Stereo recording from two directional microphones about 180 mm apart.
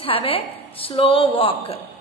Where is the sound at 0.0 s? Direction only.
30° left (ahead or behind).